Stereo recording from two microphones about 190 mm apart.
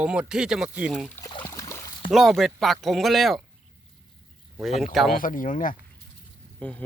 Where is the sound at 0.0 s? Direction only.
5° right (ahead or behind).